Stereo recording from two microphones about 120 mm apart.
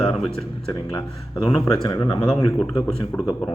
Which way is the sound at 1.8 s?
35° left (ahead or behind).